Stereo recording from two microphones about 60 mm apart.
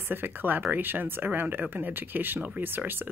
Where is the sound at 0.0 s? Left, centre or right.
Right.